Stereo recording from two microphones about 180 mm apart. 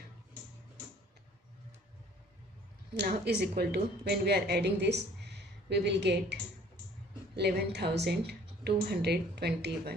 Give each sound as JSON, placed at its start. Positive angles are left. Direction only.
{"t": 2.9, "sound": "speech", "side_deg": -65}
{"t": 7.3, "sound": "a woman's voice", "side_deg": -70}